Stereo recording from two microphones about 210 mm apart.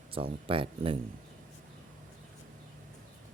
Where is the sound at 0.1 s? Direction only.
25° right (ahead or behind).